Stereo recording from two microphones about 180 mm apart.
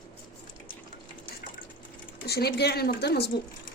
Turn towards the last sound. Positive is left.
turn(degrees=65)  # may be behind; listen again after turning